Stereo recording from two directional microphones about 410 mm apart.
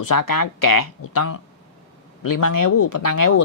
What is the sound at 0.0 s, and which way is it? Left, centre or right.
Speech, left.